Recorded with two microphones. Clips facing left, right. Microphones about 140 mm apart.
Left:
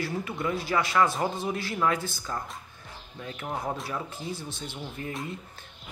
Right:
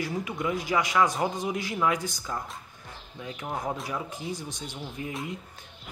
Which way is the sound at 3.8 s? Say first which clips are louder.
Right 1 dB; 15° right (ahead or behind).